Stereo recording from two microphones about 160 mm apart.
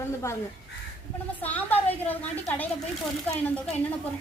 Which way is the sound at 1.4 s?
10° left (ahead or behind).